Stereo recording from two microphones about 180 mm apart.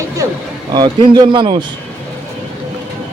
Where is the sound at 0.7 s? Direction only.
25° right (ahead or behind).